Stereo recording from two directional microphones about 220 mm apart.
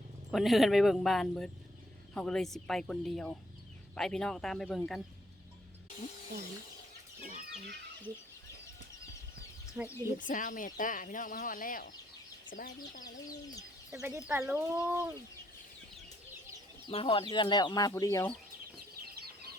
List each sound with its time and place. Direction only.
0.3 s speech: centre (ahead or behind)
9.8 s speech: 10° right (ahead or behind)
10.2 s speech: 35° left (ahead or behind)
12.9 s speech: 40° left (ahead or behind)
13.9 s speech: 10° right (ahead or behind)
16.9 s speech: 25° left (ahead or behind)
19.0 s bird flight: 45° right (ahead or behind)